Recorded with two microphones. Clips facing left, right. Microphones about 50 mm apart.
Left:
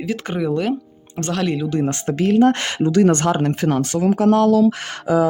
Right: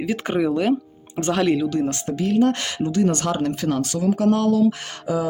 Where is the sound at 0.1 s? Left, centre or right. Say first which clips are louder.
Even; centre.